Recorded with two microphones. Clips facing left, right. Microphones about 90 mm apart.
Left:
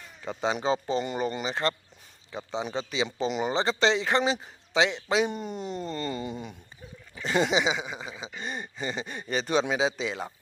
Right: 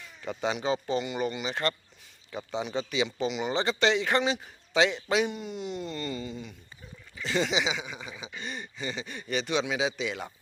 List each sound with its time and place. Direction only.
0.5 s speech: 30° left (ahead or behind)
2.3 s a man's voice: 25° left (ahead or behind)
3.2 s speech: 40° left (ahead or behind)
3.5 s a man's voice: 30° left (ahead or behind)
5.3 s speech: 40° left (ahead or behind)
6.1 s speech: 50° left (ahead or behind); by 10.2 s 30° left (ahead or behind)